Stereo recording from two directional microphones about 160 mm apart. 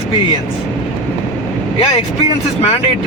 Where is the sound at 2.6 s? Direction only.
40° left (ahead or behind).